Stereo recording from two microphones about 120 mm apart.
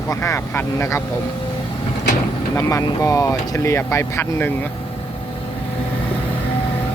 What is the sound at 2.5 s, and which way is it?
Speech, 25° left (ahead or behind).